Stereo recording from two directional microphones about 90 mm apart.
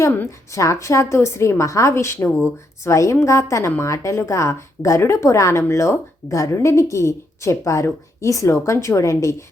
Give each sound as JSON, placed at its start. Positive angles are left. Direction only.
{"t": 0.3, "sound": "speech", "side_deg": 35}